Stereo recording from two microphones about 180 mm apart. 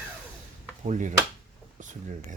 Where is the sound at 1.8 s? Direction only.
45° right (ahead or behind).